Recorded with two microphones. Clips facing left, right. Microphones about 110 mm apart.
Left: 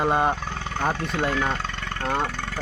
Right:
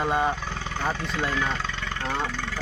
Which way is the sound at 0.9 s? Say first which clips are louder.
Left 3 dB; 50° left (ahead or behind).